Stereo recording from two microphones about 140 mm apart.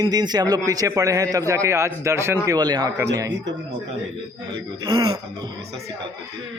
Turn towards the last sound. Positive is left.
turn(degrees=-25)  # may be behind; listen again after turning